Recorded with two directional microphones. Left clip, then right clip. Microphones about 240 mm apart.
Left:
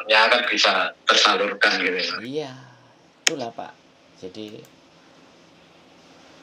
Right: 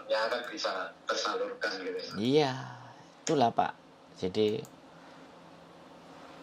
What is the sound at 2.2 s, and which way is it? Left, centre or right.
Speech, right.